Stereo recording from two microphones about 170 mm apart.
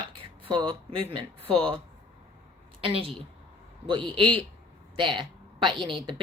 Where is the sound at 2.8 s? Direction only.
35° right (ahead or behind).